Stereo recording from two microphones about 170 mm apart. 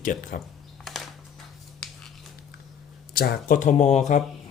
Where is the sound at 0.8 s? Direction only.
Centre (ahead or behind).